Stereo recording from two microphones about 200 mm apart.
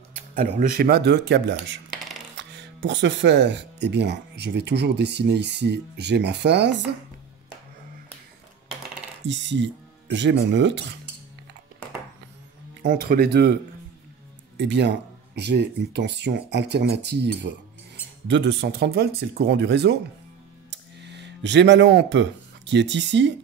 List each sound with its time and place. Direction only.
0.4 s speech: 50° right (ahead or behind)
9.2 s speech: 65° right (ahead or behind)
12.8 s speech: 50° right (ahead or behind)
14.6 s speech: 60° right (ahead or behind)